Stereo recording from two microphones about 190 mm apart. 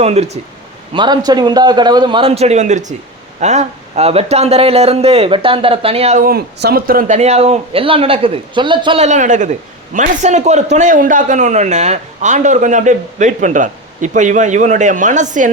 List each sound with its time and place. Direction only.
0.0 s a man's voice: 35° right (ahead or behind)
0.9 s a man's voice: 20° right (ahead or behind)
6.2 s a man's voice: 55° right (ahead or behind); by 9.0 s 25° right (ahead or behind)
9.0 s a man's voice: 40° right (ahead or behind)